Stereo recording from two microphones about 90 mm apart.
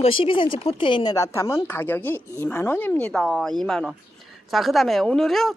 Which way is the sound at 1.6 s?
25° left (ahead or behind).